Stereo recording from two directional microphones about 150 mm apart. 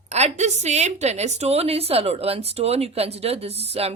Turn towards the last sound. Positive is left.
turn(degrees=-40)  # may be behind; listen again after turning